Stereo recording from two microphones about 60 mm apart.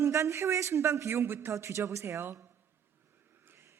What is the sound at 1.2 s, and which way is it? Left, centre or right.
Speech, right.